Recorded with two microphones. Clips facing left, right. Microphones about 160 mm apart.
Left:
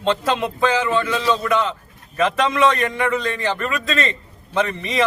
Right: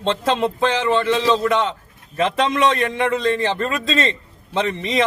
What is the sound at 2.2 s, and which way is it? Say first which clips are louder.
A man's voice: even; 25° right (ahead or behind).